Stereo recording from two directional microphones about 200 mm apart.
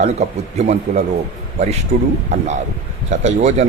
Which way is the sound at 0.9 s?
35° right (ahead or behind).